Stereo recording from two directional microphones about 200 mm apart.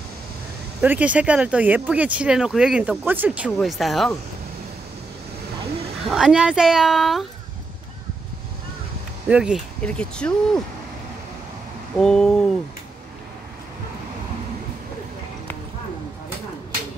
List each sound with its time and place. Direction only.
0.7 s speech: 5° right (ahead or behind)
6.0 s speech: centre (ahead or behind)
9.3 s speech: 5° right (ahead or behind)
12.0 s speech: 5° left (ahead or behind)